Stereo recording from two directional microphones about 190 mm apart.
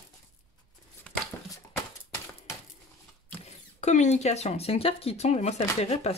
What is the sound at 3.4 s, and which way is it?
Speech, 40° left (ahead or behind).